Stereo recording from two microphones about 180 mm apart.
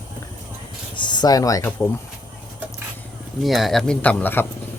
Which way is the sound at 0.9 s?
25° left (ahead or behind).